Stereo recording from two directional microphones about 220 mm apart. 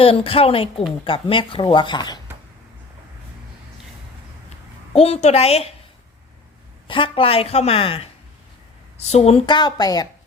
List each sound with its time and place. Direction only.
0.0 s a woman's voice: 25° left (ahead or behind)
4.9 s a woman's voice: 30° left (ahead or behind)
6.8 s a woman's voice: 25° left (ahead or behind)